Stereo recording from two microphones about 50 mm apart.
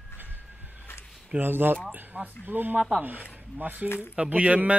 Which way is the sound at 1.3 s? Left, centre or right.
Right.